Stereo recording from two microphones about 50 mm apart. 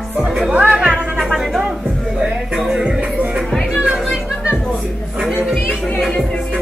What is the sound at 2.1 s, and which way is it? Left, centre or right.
Music, centre.